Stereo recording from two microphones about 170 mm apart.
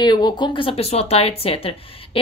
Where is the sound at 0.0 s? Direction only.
25° left (ahead or behind).